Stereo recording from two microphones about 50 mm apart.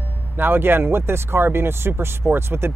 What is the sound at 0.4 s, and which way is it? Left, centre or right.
Speech, right.